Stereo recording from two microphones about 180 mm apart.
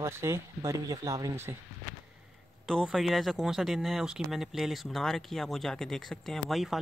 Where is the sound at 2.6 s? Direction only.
Centre (ahead or behind).